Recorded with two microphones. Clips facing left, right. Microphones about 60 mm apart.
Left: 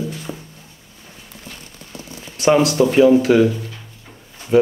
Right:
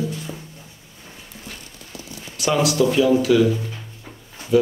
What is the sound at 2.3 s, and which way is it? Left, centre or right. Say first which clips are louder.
Speech: left 5 dB; left.